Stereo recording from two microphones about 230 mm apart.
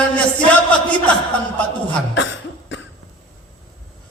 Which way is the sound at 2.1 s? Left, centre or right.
Left.